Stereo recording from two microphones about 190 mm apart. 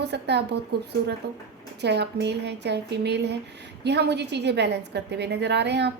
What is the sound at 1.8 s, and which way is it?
A woman's voice, 60° right (ahead or behind).